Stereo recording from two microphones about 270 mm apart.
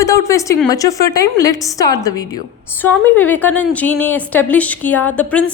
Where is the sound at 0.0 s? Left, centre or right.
Centre.